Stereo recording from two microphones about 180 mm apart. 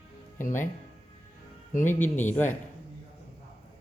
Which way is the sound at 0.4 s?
45° left (ahead or behind).